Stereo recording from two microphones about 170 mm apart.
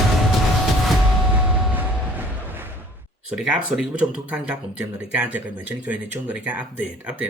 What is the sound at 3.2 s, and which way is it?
Speech, 5° right (ahead or behind).